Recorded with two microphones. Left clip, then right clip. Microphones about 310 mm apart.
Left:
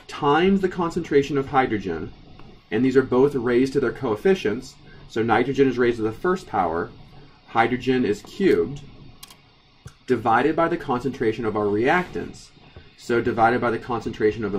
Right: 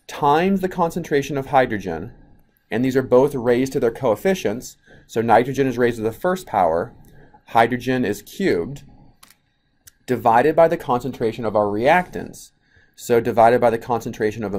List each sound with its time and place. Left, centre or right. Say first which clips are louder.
0.0 s speech: right 2 dB; centre
10.1 s speech: right 5 dB; centre
13.0 s speech: right 5 dB; centre